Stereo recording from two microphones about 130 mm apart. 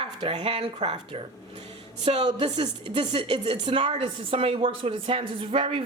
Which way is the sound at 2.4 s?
45° right (ahead or behind).